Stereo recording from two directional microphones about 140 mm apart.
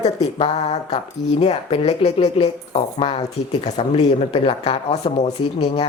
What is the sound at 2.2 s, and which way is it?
Speech, 30° left (ahead or behind).